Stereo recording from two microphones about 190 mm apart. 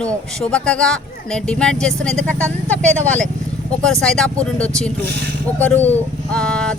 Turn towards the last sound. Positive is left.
turn(degrees=5)  # may be behind; listen again after turning